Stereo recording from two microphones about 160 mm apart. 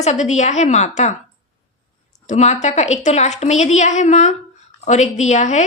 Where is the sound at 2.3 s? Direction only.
45° left (ahead or behind).